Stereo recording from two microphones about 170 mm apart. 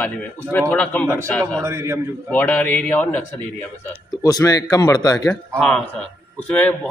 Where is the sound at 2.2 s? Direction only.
10° left (ahead or behind).